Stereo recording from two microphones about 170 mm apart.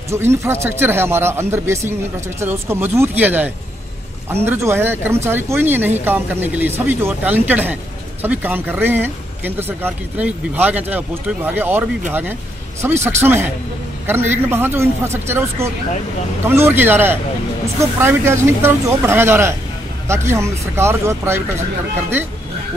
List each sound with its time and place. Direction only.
0.1 s speech: 15° right (ahead or behind)